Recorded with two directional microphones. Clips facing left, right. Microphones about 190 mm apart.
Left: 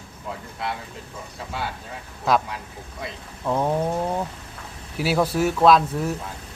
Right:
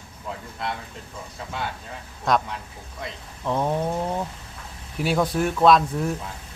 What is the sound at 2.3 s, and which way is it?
Speech, 5° left (ahead or behind).